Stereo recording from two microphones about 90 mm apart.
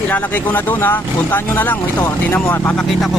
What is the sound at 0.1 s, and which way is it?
Speech, 20° left (ahead or behind).